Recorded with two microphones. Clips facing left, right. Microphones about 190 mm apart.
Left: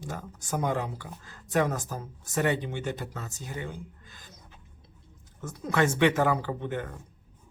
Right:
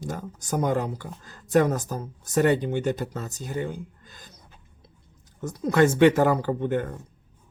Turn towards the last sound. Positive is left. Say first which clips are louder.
# right 7 dB
turn(degrees=-45)  # may be behind; listen again after turning